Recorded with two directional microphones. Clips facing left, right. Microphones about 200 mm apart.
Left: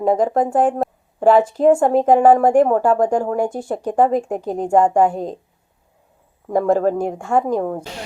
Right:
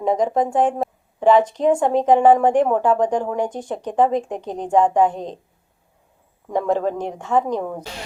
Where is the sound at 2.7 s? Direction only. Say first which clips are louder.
Left 2 dB; 40° left (ahead or behind).